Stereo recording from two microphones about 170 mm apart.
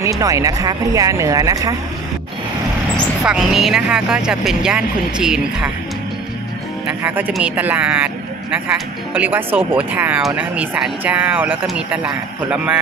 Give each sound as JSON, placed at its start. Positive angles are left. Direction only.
{"t": 0.0, "sound": "speech", "side_deg": -20}
{"t": 3.3, "sound": "speech", "side_deg": -5}
{"t": 6.9, "sound": "speech", "side_deg": -10}
{"t": 9.1, "sound": "speech", "side_deg": -10}